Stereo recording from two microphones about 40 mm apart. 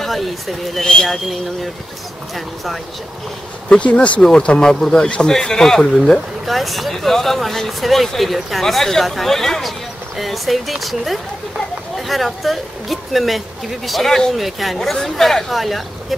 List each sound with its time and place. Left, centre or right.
0.0 s speech: centre
3.6 s speech: left
6.1 s speech: centre